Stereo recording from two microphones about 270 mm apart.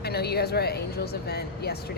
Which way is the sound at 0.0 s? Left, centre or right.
Left.